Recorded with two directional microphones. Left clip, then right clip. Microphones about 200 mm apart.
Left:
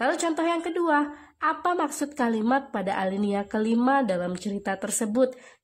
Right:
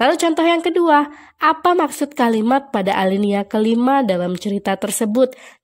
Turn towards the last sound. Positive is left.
turn(degrees=-35)  # may be behind; listen again after turning